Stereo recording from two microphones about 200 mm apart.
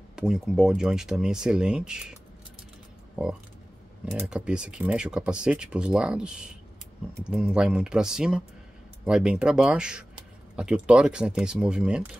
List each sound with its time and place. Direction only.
0.1 s speech: 5° right (ahead or behind)
4.0 s speech: 5° right (ahead or behind)